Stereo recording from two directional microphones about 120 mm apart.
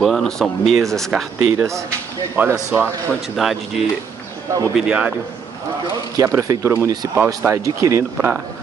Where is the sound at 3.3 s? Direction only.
Centre (ahead or behind).